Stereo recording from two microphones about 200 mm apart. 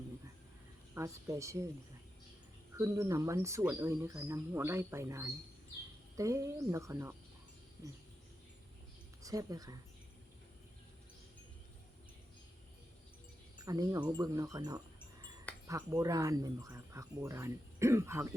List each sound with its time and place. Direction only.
0.9 s speech: 15° right (ahead or behind)
2.7 s speech: 15° right (ahead or behind)
9.2 s speech: 15° right (ahead or behind)
13.7 s speech: 15° right (ahead or behind)